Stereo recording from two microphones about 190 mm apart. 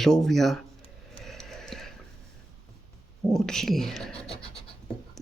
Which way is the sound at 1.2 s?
Centre (ahead or behind).